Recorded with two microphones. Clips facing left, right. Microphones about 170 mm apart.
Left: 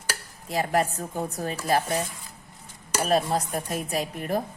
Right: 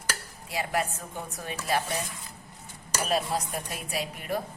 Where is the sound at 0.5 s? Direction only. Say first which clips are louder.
Left 5 dB; 40° left (ahead or behind).